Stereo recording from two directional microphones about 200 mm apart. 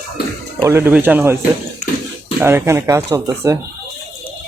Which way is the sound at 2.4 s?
10° right (ahead or behind).